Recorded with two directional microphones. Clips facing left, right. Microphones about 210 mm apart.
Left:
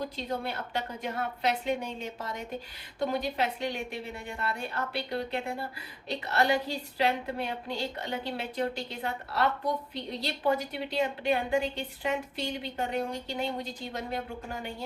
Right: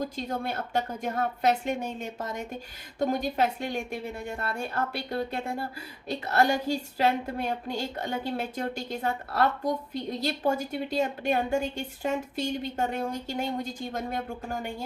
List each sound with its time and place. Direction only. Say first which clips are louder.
0.0 s a woman's voice: right 2 dB; 45° right (ahead or behind)